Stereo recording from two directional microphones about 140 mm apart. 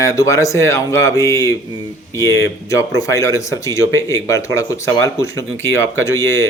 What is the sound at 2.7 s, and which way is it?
Speech, 20° left (ahead or behind).